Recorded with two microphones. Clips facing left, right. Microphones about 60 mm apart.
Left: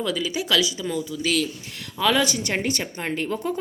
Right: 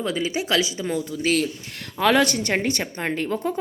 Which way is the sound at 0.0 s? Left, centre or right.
Right.